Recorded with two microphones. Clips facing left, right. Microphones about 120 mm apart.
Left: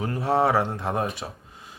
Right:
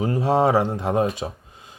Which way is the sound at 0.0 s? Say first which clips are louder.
Right 3 dB; 15° right (ahead or behind).